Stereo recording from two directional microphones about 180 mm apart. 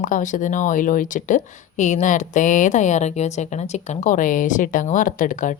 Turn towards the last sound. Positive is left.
turn(degrees=45)  # may be behind; listen again after turning